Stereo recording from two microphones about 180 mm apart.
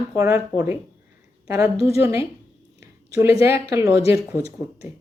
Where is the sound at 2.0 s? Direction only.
15° right (ahead or behind).